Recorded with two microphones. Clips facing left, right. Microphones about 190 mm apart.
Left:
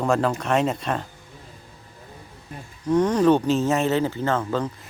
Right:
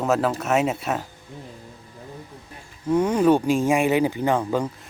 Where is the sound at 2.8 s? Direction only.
10° right (ahead or behind).